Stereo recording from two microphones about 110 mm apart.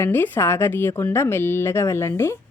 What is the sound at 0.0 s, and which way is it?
A woman's voice, 20° left (ahead or behind).